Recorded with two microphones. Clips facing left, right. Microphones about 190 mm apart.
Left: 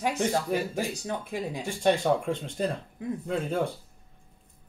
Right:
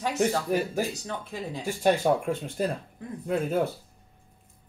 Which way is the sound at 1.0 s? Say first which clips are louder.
Left 3 dB; 15° left (ahead or behind).